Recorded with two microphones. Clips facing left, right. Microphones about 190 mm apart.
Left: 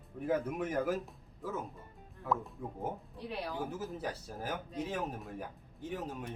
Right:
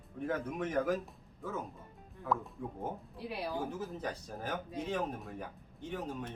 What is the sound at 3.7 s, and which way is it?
Speech, 5° left (ahead or behind).